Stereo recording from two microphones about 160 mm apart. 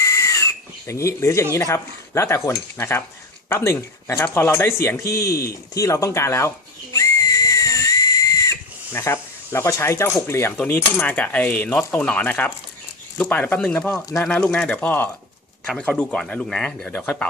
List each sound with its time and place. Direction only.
0.0 s whistle: 20° left (ahead or behind)
1.5 s speech: 20° left (ahead or behind)
6.9 s whistle: 20° left (ahead or behind)
13.1 s speech: 10° left (ahead or behind)